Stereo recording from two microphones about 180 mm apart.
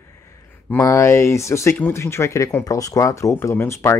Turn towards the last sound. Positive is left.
turn(degrees=15)  # may be behind; listen again after turning